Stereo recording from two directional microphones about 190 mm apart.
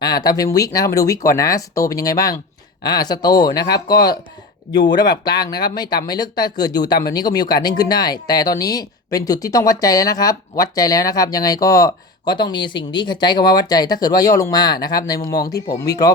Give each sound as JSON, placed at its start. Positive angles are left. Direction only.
{"t": 0.0, "sound": "speech", "side_deg": 20}
{"t": 4.8, "sound": "speech", "side_deg": 20}